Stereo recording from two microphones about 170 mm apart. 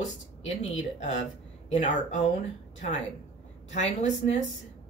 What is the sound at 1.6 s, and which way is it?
Speech, 40° left (ahead or behind).